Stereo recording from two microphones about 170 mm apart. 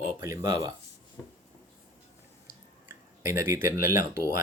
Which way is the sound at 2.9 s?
15° right (ahead or behind).